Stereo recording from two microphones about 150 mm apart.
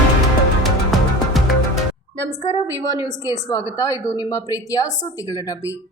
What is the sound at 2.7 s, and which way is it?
A woman's voice, 25° left (ahead or behind).